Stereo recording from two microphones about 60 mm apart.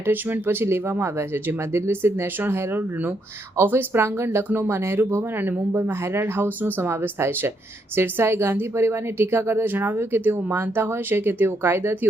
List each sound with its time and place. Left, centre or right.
0.0 s a woman's voice: right